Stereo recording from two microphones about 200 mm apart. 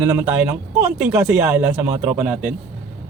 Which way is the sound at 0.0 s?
15° right (ahead or behind).